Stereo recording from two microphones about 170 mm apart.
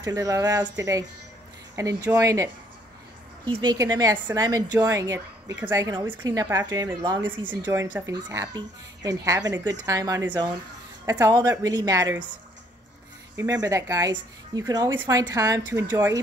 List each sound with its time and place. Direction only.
0.0 s speech: 20° right (ahead or behind)
3.4 s speech: 25° right (ahead or behind)
13.4 s speech: 20° right (ahead or behind)